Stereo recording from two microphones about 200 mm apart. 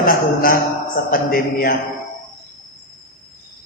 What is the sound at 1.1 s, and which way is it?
Speech, 45° left (ahead or behind).